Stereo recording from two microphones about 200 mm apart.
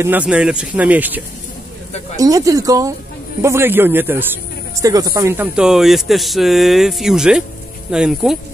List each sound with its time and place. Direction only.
0.0 s speech: 10° right (ahead or behind)